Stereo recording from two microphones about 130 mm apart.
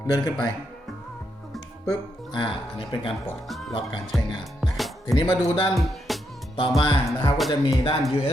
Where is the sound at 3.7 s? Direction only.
45° left (ahead or behind).